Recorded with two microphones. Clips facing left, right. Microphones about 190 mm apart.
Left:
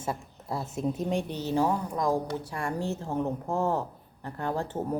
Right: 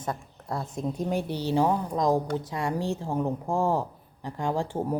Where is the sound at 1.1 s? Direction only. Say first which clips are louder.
Right 2 dB; 10° right (ahead or behind).